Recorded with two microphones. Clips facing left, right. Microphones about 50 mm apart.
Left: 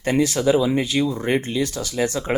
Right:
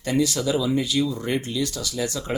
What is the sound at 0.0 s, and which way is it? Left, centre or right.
Speech, left.